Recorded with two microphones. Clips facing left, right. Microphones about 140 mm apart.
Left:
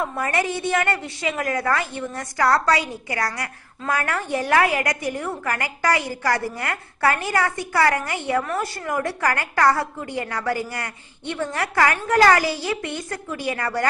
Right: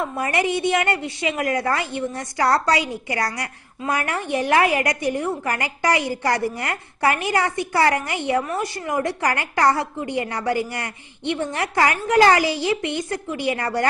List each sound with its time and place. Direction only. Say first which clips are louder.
0.0 s a woman's voice: right 1 dB; 20° right (ahead or behind)